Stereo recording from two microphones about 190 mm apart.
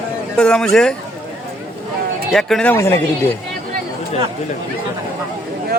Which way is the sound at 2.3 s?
Centre (ahead or behind).